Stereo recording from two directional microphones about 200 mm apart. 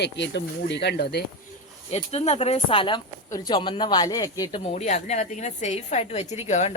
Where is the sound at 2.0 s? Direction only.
30° left (ahead or behind).